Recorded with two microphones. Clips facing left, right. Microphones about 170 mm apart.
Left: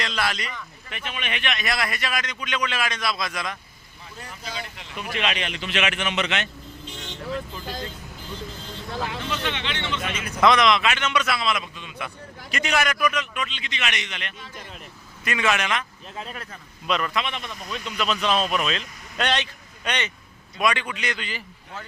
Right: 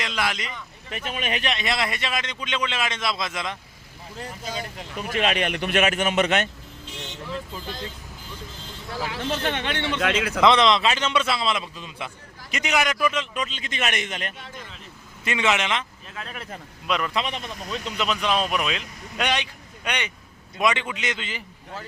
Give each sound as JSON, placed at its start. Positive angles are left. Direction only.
{"t": 0.0, "sound": "speech", "side_deg": -15}
{"t": 0.9, "sound": "a man's voice", "side_deg": -40}
{"t": 4.4, "sound": "a man's voice", "side_deg": -45}
{"t": 9.3, "sound": "a man's voice", "side_deg": -50}
{"t": 10.0, "sound": "a man's voice", "side_deg": -90}
{"t": 10.4, "sound": "a man's voice", "side_deg": -30}
{"t": 15.2, "sound": "a man's voice", "side_deg": -25}
{"t": 16.8, "sound": "speech", "side_deg": -10}
{"t": 17.2, "sound": "speech", "side_deg": -35}
{"t": 17.9, "sound": "a man's voice", "side_deg": -15}